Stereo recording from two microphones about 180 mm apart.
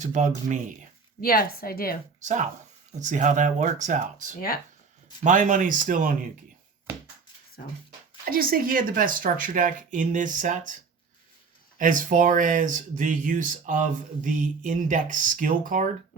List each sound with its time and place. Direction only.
0.0 s speech: 40° right (ahead or behind)
1.2 s a woman's voice: 55° left (ahead or behind)
2.2 s speech: 45° right (ahead or behind)
4.4 s a woman's voice: 55° left (ahead or behind)
5.2 s speech: 45° right (ahead or behind)
8.2 s speech: 55° right (ahead or behind)
11.8 s speech: 45° right (ahead or behind)